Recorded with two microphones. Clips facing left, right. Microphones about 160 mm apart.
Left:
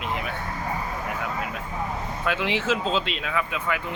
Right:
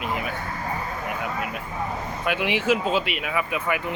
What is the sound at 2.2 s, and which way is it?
Speech, 15° right (ahead or behind).